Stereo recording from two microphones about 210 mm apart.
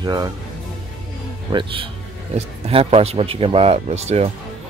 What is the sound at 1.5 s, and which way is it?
Speech, 25° right (ahead or behind).